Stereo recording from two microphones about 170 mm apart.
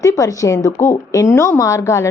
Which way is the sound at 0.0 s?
20° left (ahead or behind).